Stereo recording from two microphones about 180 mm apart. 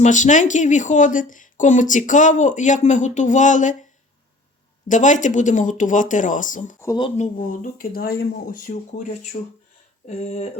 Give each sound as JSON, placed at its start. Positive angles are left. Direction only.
{"t": 0.0, "sound": "speech", "side_deg": 45}
{"t": 4.9, "sound": "speech", "side_deg": 45}
{"t": 6.8, "sound": "speech", "side_deg": 25}
{"t": 7.2, "sound": "speech", "side_deg": 50}
{"t": 9.3, "sound": "speech", "side_deg": 40}